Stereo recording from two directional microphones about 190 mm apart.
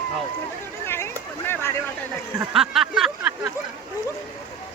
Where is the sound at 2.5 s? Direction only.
Centre (ahead or behind).